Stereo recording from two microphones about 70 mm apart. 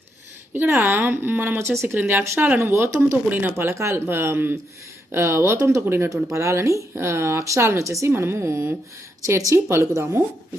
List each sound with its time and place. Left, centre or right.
0.6 s a woman's voice: right
3.2 s speech: right
3.5 s a woman's voice: right